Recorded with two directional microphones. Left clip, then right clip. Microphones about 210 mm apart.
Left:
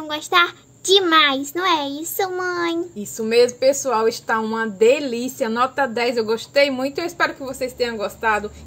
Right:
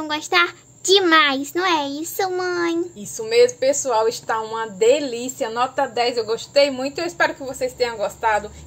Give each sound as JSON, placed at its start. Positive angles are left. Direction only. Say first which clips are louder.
{"t": 0.0, "sound": "a child's voice", "louder": "left 1 dB", "side_deg": 0}
{"t": 3.0, "sound": "a woman's voice", "louder": "even", "side_deg": 40}